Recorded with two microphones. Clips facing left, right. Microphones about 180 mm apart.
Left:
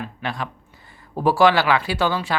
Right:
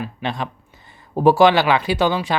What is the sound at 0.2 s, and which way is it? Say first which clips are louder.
Speech: right 2 dB; 20° right (ahead or behind).